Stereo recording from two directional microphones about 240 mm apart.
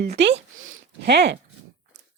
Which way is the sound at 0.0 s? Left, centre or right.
Right.